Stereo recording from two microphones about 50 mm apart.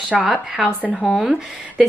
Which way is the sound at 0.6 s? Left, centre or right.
Left.